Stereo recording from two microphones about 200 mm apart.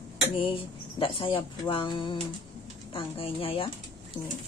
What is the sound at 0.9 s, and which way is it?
Speech, 25° left (ahead or behind).